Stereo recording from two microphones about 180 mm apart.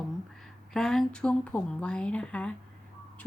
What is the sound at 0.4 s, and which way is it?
A woman's voice, centre (ahead or behind).